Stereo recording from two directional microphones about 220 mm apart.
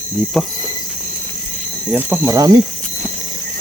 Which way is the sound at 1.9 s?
10° right (ahead or behind).